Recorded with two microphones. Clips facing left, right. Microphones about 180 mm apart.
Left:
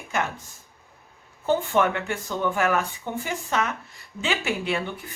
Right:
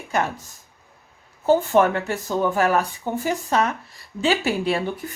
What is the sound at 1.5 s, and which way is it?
Speech, 40° right (ahead or behind).